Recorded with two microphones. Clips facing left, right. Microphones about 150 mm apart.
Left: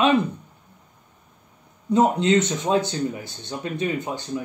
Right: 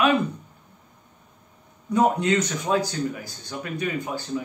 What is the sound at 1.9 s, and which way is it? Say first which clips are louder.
Speech: left 2 dB; 25° left (ahead or behind).